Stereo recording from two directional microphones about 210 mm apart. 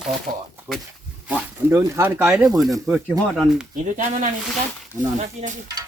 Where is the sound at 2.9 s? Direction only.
Centre (ahead or behind).